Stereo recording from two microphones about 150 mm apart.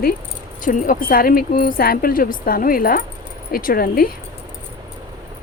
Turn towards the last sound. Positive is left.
turn(degrees=80)